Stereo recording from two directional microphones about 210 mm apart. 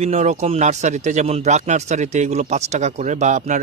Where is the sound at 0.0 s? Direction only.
30° right (ahead or behind).